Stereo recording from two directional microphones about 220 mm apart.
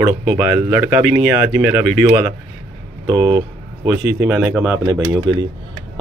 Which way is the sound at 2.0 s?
20° right (ahead or behind).